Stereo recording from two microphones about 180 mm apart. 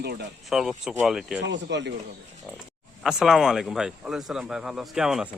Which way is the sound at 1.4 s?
75° right (ahead or behind).